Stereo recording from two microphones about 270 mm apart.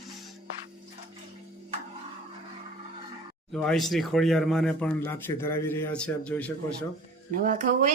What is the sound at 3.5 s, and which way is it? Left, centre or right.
Speech, centre.